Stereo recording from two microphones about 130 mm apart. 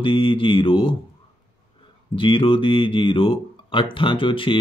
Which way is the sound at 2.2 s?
45° left (ahead or behind).